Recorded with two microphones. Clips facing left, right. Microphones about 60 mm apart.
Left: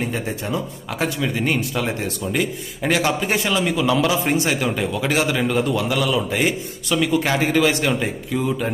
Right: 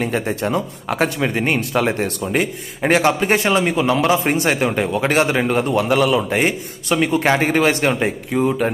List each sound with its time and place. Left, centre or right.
0.0 s speech: right